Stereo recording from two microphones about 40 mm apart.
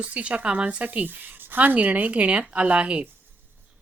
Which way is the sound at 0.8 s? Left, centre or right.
Right.